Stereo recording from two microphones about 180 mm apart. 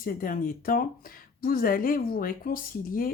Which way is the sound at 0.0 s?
50° left (ahead or behind).